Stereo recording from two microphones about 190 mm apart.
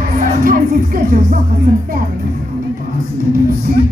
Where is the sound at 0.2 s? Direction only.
50° right (ahead or behind).